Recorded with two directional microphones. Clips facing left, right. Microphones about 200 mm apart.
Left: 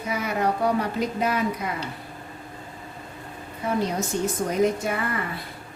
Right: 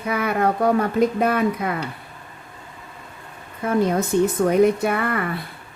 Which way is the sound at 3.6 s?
55° right (ahead or behind).